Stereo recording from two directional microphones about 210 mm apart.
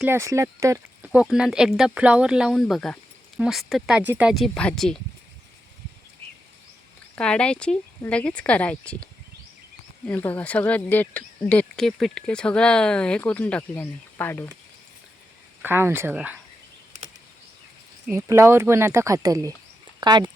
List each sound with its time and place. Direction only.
0.0 s speech: 10° right (ahead or behind)
7.2 s speech: 5° left (ahead or behind)
10.1 s speech: 10° left (ahead or behind)
15.6 s speech: 10° right (ahead or behind)
18.0 s speech: 15° right (ahead or behind)